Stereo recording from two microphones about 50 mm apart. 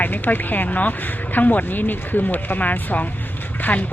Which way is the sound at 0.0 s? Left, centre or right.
Left.